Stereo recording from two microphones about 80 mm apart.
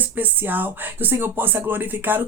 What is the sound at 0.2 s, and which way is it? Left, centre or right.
Speech, right.